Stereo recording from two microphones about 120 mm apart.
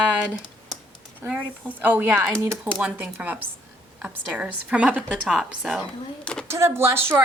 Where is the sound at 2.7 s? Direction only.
10° right (ahead or behind).